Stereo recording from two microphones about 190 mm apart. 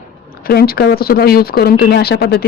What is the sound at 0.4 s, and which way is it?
Speech, 55° left (ahead or behind).